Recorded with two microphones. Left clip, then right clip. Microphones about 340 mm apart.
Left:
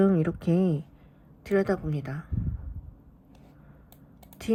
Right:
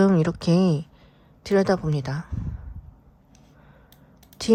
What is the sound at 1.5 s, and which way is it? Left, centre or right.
Speech, centre.